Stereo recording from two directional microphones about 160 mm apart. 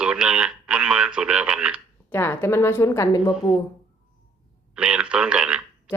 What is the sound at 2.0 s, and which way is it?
Speech, 15° left (ahead or behind).